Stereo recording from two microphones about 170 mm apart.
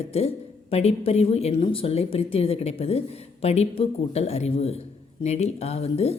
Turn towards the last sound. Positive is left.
turn(degrees=35)  # may be behind; listen again after turning